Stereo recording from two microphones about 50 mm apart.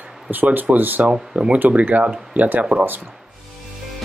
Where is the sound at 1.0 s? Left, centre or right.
Centre.